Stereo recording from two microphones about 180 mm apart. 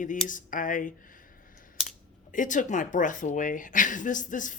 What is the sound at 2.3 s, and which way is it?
Speech, 45° left (ahead or behind).